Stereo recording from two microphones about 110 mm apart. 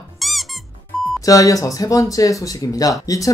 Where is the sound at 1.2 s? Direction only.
30° left (ahead or behind).